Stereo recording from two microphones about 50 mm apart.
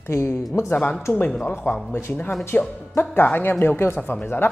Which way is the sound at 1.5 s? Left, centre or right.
Left.